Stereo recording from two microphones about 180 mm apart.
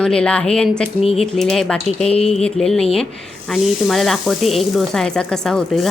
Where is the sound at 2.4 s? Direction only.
5° left (ahead or behind).